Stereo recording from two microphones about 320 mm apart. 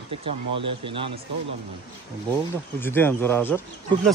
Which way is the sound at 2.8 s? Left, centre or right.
Centre.